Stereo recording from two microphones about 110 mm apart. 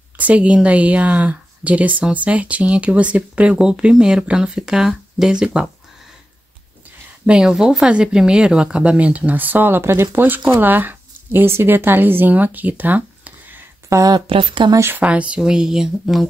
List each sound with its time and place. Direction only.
0.2 s speech: 10° right (ahead or behind)
7.2 s speech: 5° right (ahead or behind)
13.8 s speech: 30° right (ahead or behind)
14.2 s speech: 55° right (ahead or behind)
14.7 s speech: 20° right (ahead or behind); by 16.3 s 5° right (ahead or behind)